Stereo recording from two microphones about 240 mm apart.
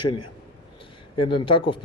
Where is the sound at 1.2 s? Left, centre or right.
Left.